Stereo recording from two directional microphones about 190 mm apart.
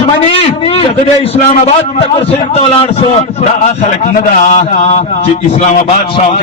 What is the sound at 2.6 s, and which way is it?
Speech, 30° left (ahead or behind).